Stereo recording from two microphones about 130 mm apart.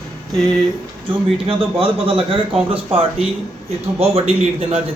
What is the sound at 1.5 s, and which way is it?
A man's voice, 45° right (ahead or behind).